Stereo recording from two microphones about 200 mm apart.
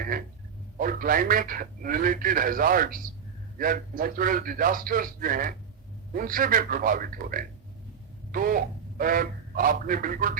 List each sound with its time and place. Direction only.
0.8 s a man's voice: 45° right (ahead or behind)